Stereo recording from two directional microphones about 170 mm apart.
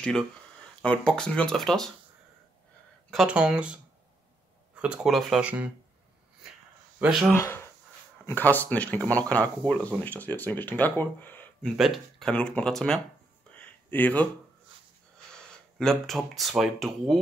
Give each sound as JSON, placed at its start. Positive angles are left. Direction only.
{"t": 0.0, "sound": "speech", "side_deg": 5}
{"t": 3.1, "sound": "speech", "side_deg": -5}
{"t": 7.0, "sound": "speech", "side_deg": 0}
{"t": 7.3, "sound": "speech", "side_deg": 15}
{"t": 11.7, "sound": "speech", "side_deg": 0}
{"t": 13.5, "sound": "a sound", "side_deg": 10}
{"t": 15.3, "sound": "speech", "side_deg": 5}